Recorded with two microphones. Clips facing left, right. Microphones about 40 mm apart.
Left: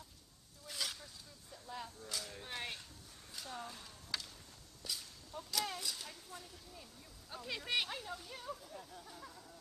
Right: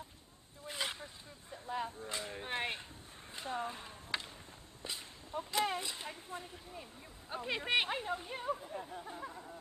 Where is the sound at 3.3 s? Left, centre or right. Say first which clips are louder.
Right 7 dB; right.